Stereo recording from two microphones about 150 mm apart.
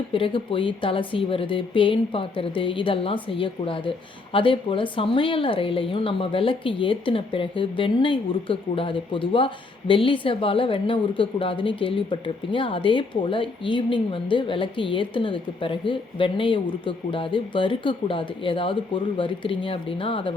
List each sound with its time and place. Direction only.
0.1 s a woman's voice: 35° left (ahead or behind)